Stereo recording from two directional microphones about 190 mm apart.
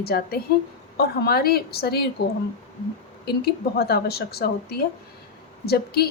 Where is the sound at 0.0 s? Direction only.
55° left (ahead or behind).